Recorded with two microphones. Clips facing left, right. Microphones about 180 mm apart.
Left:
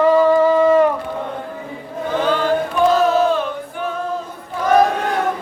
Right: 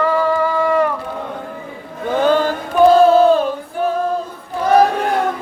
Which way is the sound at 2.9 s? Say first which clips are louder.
Right 7 dB; 30° right (ahead or behind).